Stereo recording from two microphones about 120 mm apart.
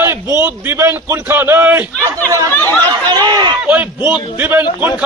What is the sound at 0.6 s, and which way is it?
A man's voice, 20° right (ahead or behind).